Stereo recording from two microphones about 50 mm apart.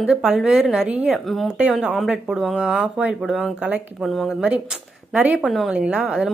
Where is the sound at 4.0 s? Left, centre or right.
Centre.